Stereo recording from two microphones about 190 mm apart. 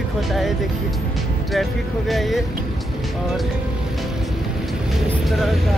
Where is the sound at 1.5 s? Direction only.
Centre (ahead or behind).